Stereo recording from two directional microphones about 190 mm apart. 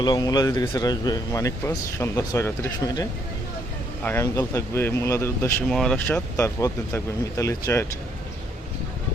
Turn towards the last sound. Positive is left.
turn(degrees=15)  # may be behind; listen again after turning